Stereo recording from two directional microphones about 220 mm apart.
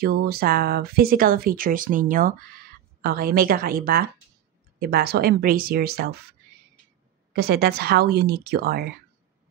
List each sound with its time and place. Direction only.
0.0 s a woman's voice: 45° right (ahead or behind)
7.3 s a woman's voice: 45° right (ahead or behind)